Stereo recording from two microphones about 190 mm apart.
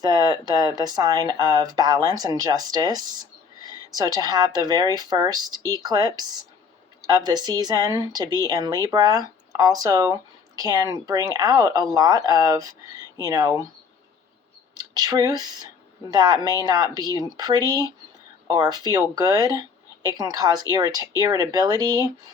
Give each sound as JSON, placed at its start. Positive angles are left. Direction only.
{"t": 0.0, "sound": "speech", "side_deg": -20}
{"t": 14.9, "sound": "speech", "side_deg": -20}